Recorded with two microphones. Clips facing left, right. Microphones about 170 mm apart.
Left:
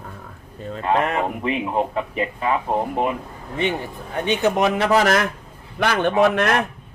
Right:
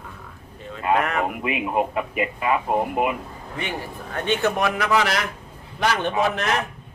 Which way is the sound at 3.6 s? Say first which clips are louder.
Left 7 dB; 20° left (ahead or behind).